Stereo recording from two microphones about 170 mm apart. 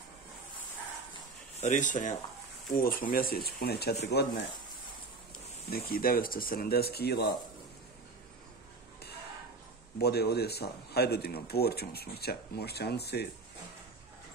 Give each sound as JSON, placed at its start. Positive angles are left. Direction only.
{"t": 1.6, "sound": "speech", "side_deg": 45}
{"t": 2.8, "sound": "speech", "side_deg": 60}
{"t": 5.7, "sound": "speech", "side_deg": 60}
{"t": 9.9, "sound": "speech", "side_deg": 70}